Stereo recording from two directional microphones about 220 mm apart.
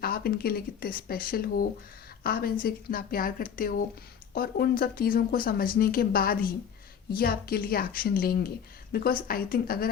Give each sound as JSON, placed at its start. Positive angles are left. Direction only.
{"t": 0.0, "sound": "a woman's voice", "side_deg": 45}